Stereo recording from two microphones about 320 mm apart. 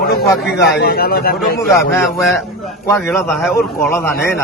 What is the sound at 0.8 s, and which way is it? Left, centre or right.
A man's voice, left.